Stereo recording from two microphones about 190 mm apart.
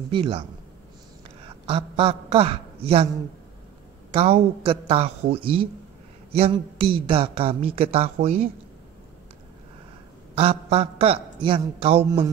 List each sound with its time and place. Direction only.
0.1 s a man's voice: 30° right (ahead or behind)
1.7 s a man's voice: 30° right (ahead or behind)
4.1 s a man's voice: 30° right (ahead or behind)
10.3 s a man's voice: 30° right (ahead or behind)